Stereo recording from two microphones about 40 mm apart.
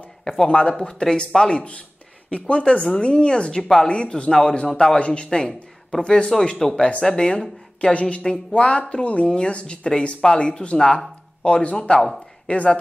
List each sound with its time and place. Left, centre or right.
0.2 s speech: centre
3.6 s speech: centre
3.9 s speech: left
4.3 s speech: centre
5.5 s a sound: centre
6.0 s speech: left
6.6 s speech: centre
7.9 s speech: left